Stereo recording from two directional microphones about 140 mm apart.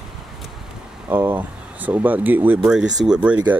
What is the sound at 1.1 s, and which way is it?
Speech, 15° right (ahead or behind).